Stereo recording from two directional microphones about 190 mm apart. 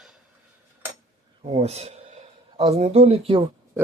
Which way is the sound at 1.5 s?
30° right (ahead or behind).